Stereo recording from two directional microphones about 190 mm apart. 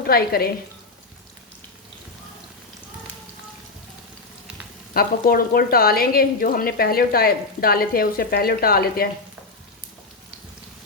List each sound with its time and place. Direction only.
0.1 s speech: 55° left (ahead or behind)
4.9 s speech: 50° left (ahead or behind)